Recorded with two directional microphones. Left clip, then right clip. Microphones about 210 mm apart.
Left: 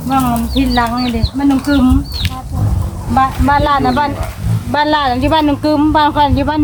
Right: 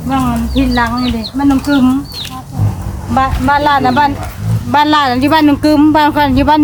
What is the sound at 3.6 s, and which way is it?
Speech, 45° right (ahead or behind).